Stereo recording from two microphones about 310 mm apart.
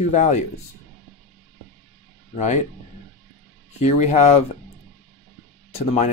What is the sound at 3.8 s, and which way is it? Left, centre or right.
Speech, left.